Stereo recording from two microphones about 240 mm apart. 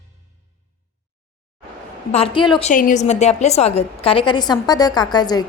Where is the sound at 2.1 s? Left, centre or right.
Left.